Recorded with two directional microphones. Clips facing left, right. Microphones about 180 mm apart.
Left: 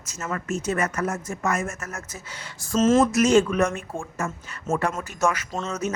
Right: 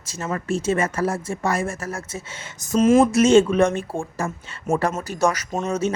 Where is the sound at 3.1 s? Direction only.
25° right (ahead or behind).